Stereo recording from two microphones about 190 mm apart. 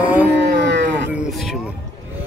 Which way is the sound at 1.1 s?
Centre (ahead or behind).